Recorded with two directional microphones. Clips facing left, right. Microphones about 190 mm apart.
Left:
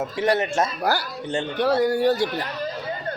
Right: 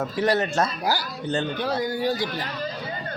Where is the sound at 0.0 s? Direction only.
25° left (ahead or behind).